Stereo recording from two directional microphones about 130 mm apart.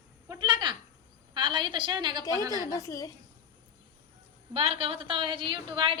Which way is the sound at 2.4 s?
25° right (ahead or behind).